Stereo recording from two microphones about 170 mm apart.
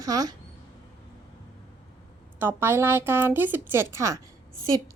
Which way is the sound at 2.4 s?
15° right (ahead or behind).